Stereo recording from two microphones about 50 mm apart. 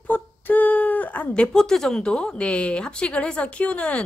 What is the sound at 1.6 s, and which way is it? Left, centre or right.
A woman's voice, centre.